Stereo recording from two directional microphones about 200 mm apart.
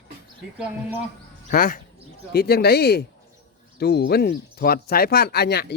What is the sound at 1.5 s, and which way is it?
A man's voice, 45° left (ahead or behind).